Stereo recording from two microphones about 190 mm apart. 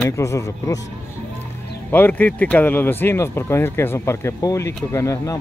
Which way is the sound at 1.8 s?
10° left (ahead or behind).